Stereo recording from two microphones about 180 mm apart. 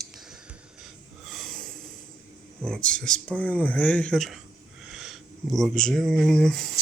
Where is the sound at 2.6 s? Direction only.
5° left (ahead or behind).